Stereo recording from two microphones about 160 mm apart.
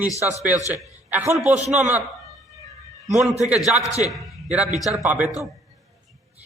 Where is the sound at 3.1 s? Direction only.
Centre (ahead or behind).